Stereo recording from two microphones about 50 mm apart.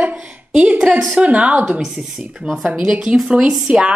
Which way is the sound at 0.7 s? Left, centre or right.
Centre.